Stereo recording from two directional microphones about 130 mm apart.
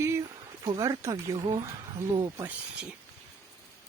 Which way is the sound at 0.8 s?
25° right (ahead or behind).